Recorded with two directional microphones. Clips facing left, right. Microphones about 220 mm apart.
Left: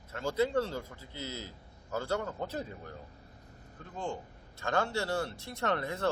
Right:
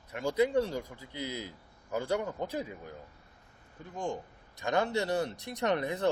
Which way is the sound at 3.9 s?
15° right (ahead or behind).